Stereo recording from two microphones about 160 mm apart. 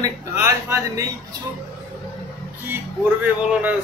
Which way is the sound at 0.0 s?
20° right (ahead or behind).